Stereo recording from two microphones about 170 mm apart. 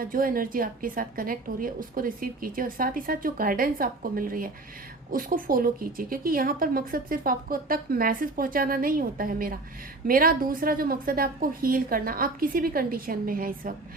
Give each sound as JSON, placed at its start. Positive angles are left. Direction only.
{"t": 0.0, "sound": "a woman's voice", "side_deg": -55}